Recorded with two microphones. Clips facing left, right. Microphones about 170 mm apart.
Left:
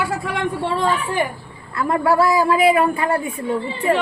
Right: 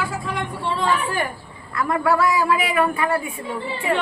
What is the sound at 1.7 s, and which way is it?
A man's voice, 30° left (ahead or behind).